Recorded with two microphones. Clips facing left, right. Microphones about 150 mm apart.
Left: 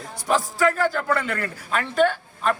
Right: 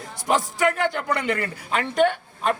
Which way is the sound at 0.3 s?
20° right (ahead or behind).